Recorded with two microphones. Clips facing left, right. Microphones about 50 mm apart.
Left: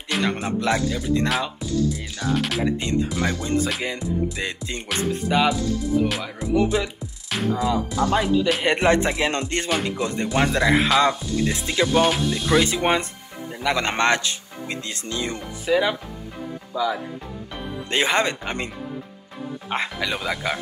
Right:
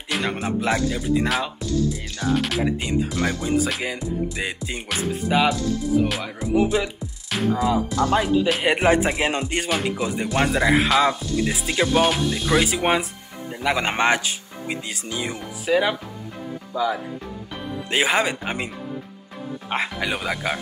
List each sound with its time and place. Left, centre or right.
0.1 s music: centre
16.7 s speech: right
17.9 s music: centre
19.7 s music: centre